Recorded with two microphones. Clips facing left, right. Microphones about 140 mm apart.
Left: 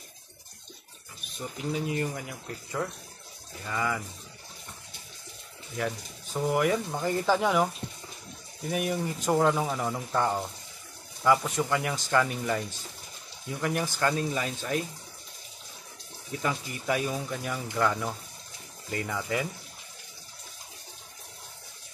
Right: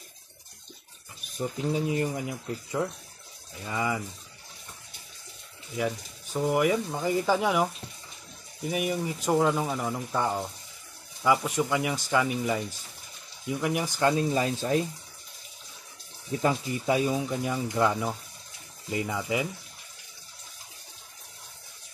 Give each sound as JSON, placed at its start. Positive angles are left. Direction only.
{"t": 1.7, "sound": "speech", "side_deg": -20}
{"t": 5.8, "sound": "speech", "side_deg": -5}
{"t": 16.3, "sound": "speech", "side_deg": -25}